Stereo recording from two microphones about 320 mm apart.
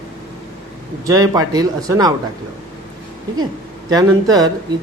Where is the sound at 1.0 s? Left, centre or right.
Centre.